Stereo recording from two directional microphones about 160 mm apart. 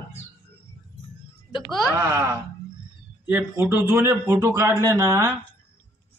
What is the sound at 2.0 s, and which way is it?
A man's voice, 20° right (ahead or behind).